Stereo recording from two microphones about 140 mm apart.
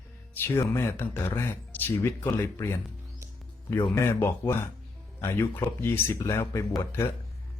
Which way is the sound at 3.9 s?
20° left (ahead or behind).